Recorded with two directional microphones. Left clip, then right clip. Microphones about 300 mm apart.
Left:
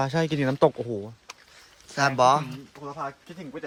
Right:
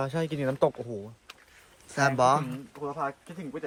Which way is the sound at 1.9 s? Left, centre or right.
Centre.